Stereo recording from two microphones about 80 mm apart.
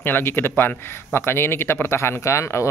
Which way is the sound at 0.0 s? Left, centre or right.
Left.